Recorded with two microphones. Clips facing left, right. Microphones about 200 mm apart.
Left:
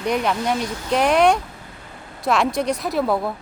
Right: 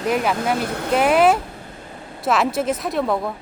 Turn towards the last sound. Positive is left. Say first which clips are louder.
# left 1 dB
turn(degrees=5)  # may be behind; listen again after turning